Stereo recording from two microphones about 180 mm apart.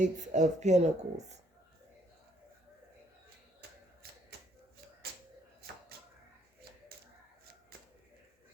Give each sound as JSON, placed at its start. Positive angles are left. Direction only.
{"t": 0.0, "sound": "a woman's voice", "side_deg": -40}
{"t": 4.0, "sound": "typewriter", "side_deg": -60}
{"t": 5.9, "sound": "a sound", "side_deg": -60}